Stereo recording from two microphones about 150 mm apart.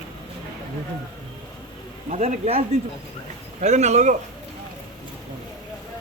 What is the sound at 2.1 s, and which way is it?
Speech, 50° right (ahead or behind).